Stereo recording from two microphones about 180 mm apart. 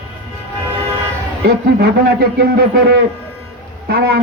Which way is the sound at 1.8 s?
60° right (ahead or behind).